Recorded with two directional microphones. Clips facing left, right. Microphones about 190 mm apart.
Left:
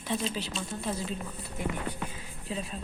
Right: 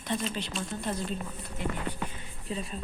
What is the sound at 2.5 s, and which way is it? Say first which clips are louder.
Speech: even; centre (ahead or behind).